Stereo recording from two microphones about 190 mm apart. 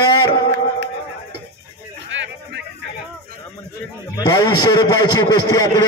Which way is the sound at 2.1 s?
75° right (ahead or behind).